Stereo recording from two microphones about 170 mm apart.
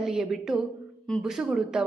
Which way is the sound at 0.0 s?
Centre (ahead or behind).